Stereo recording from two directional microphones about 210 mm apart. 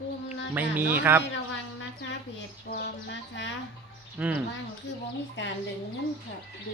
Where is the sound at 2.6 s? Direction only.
55° left (ahead or behind).